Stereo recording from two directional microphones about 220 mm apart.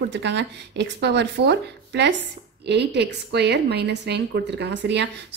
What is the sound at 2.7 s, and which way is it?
A woman's voice, 50° right (ahead or behind).